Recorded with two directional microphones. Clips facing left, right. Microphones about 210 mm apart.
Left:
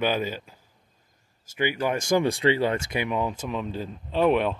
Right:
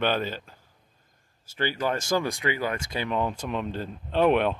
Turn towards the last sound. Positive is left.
turn(degrees=0)  # may be behind; listen again after turning